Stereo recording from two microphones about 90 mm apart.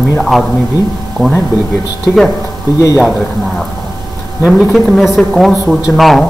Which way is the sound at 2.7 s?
35° left (ahead or behind).